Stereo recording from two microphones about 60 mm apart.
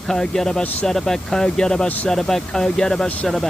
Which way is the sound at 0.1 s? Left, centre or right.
Centre.